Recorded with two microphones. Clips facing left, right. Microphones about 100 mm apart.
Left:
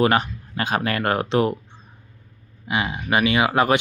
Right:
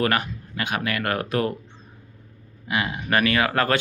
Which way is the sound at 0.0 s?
25° left (ahead or behind).